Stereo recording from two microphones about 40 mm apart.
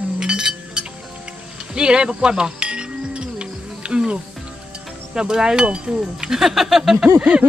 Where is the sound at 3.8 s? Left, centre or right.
Right.